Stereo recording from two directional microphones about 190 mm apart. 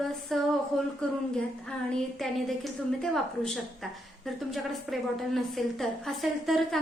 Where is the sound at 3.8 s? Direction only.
Centre (ahead or behind).